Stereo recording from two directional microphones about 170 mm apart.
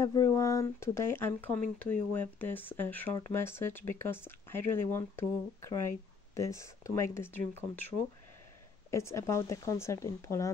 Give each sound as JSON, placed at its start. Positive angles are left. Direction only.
{"t": 0.0, "sound": "speech", "side_deg": 20}
{"t": 8.9, "sound": "speech", "side_deg": 15}